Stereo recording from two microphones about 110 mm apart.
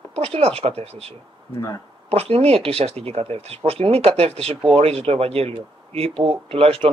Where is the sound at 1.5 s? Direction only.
30° left (ahead or behind).